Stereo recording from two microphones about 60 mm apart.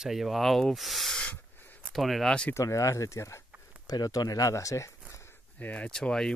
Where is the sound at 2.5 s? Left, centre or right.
Left.